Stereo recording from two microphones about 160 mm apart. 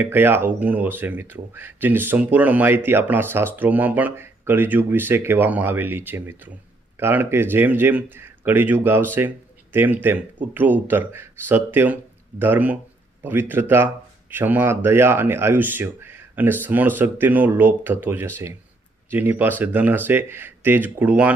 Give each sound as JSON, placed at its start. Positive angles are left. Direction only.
{"t": 0.0, "sound": "speech", "side_deg": -15}